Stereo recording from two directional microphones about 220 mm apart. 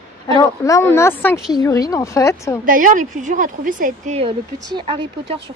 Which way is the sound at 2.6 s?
35° right (ahead or behind).